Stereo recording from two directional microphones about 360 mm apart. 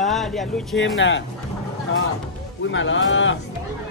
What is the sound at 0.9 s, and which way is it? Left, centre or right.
Speech, left.